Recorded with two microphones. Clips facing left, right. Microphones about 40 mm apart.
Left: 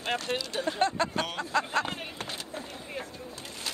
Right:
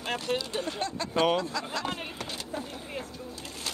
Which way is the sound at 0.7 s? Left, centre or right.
Left.